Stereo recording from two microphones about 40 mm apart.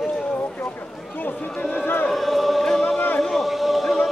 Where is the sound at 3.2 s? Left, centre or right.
Centre.